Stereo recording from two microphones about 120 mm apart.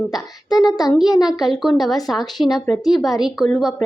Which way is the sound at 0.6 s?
35° left (ahead or behind).